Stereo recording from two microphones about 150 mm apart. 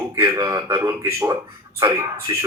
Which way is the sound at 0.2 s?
20° right (ahead or behind).